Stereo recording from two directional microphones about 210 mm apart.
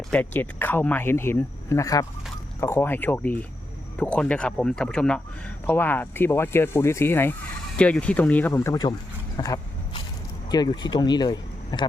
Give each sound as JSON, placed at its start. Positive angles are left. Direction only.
{"t": 0.1, "sound": "speech", "side_deg": 10}
{"t": 9.4, "sound": "a sound", "side_deg": 15}
{"t": 10.5, "sound": "speech", "side_deg": 20}